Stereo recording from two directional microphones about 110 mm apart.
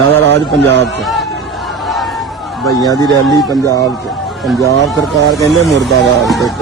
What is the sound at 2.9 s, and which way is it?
Speech, 35° left (ahead or behind).